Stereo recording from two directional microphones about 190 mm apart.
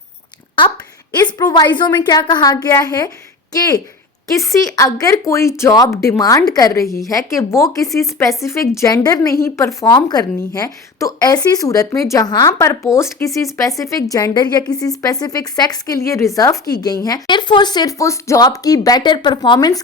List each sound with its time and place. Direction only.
1.1 s a woman's voice: 20° left (ahead or behind)
4.4 s a woman's voice: 15° left (ahead or behind)